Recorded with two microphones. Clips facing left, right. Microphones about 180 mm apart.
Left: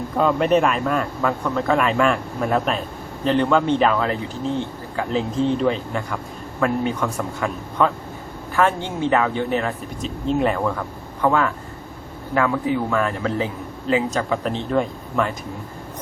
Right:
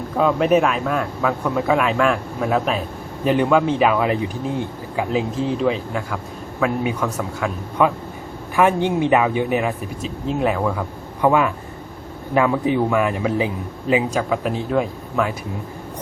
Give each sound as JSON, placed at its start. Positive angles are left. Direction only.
{"t": 0.2, "sound": "a man's voice", "side_deg": -5}
{"t": 8.5, "sound": "a man's voice", "side_deg": -15}